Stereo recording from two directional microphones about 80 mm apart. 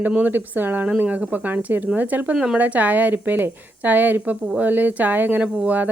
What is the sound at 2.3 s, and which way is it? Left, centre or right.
Speech, centre.